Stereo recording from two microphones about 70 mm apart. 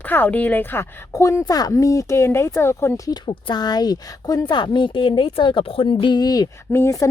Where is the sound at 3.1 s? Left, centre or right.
Left.